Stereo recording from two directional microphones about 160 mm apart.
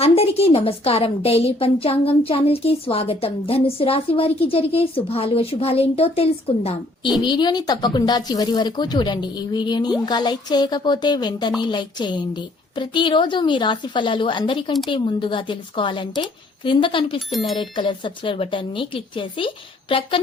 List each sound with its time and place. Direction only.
0.0 s a woman's voice: 40° left (ahead or behind)
7.1 s a woman's voice: 25° left (ahead or behind)
17.2 s speech: centre (ahead or behind)
17.6 s a woman's voice: 30° left (ahead or behind)